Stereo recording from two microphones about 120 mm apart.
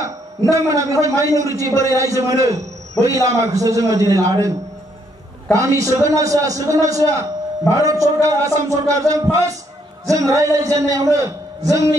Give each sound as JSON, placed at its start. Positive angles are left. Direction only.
{"t": 0.0, "sound": "a man's voice", "side_deg": -30}